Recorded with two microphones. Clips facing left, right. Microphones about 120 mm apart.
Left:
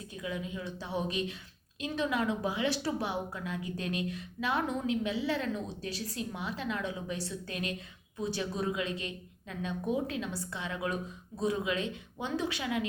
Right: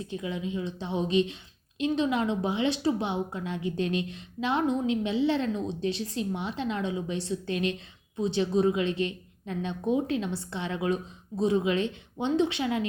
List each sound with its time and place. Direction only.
0.1 s a woman's voice: 25° right (ahead or behind)